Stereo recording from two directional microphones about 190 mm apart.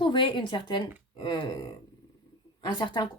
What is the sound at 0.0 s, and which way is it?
Speech, 25° left (ahead or behind).